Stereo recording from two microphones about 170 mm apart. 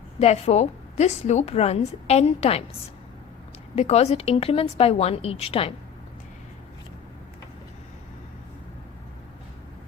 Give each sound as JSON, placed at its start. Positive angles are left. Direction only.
{"t": 0.2, "sound": "a woman's voice", "side_deg": 40}
{"t": 3.8, "sound": "a woman's voice", "side_deg": 40}